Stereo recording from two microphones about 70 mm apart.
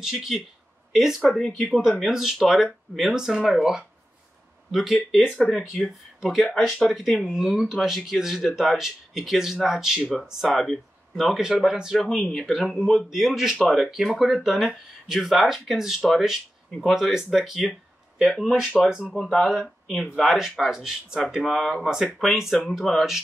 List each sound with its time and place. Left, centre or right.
0.0 s speech: centre
2.0 s speech: centre
5.2 s speech: centre
5.7 s speech: centre
20.3 s speech: centre